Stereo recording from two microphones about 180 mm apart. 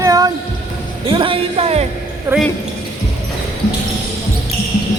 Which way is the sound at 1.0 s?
30° right (ahead or behind).